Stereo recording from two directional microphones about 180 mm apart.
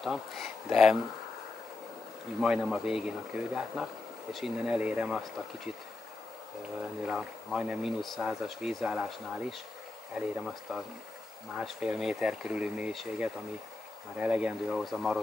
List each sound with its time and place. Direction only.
0.0 s speech: centre (ahead or behind)
2.4 s speech: 5° right (ahead or behind)
7.1 s speech: 5° right (ahead or behind)
10.1 s speech: centre (ahead or behind)